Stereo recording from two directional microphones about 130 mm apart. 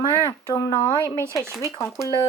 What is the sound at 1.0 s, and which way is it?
Speech, 20° right (ahead or behind).